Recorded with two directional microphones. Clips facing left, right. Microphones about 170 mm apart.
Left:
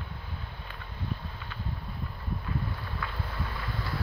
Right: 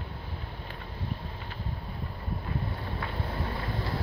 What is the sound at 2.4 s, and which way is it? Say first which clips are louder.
Boat: right 1 dB; 35° right (ahead or behind).